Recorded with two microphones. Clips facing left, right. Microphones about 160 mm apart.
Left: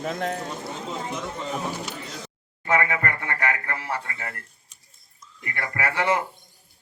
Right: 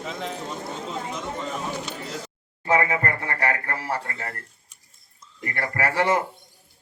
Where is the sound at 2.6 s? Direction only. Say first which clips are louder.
Right 2 dB; 30° right (ahead or behind).